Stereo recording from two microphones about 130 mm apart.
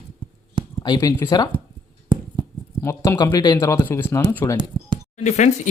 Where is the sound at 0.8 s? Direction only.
35° left (ahead or behind).